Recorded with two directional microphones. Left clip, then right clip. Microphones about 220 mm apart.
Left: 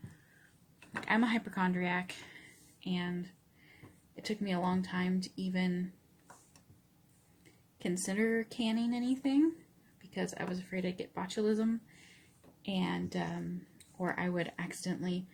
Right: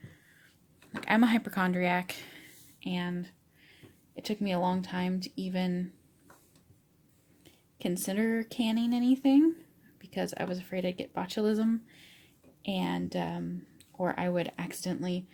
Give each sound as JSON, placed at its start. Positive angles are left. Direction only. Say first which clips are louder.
{"t": 1.0, "sound": "speech", "louder": "right 5 dB", "side_deg": -45}
{"t": 7.8, "sound": "speech", "louder": "right 2 dB", "side_deg": -40}